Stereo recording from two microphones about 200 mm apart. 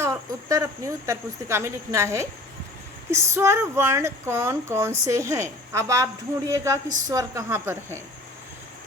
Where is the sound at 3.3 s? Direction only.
15° right (ahead or behind).